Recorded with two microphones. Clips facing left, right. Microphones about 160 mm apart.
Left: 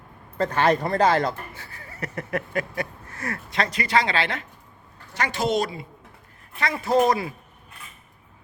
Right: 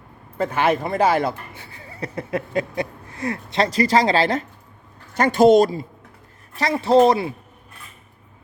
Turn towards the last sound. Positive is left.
turn(degrees=-30)  # may be behind; listen again after turning